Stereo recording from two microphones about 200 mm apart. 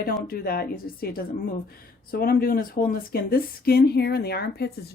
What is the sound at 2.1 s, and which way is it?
Speech, 50° left (ahead or behind).